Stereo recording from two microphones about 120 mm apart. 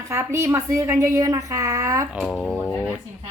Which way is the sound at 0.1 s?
20° right (ahead or behind).